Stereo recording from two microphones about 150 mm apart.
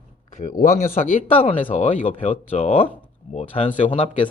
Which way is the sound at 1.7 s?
50° left (ahead or behind).